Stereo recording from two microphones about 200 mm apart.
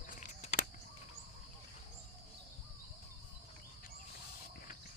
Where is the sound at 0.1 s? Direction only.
40° left (ahead or behind).